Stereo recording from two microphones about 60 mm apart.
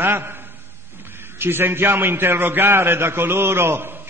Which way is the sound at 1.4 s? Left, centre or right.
Right.